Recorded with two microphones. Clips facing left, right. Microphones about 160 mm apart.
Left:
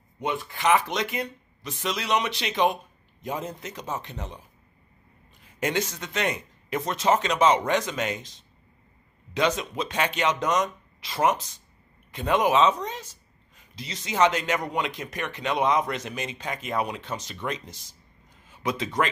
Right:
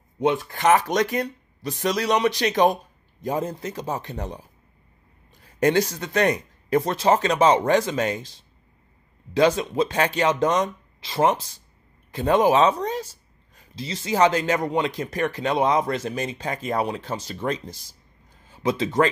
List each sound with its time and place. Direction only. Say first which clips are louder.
0.5 s speech: even; 45° right (ahead or behind)
5.6 s speech: right 7 dB; 35° right (ahead or behind)